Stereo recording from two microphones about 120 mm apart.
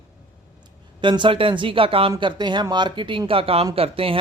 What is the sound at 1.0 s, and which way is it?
Speech, 40° right (ahead or behind).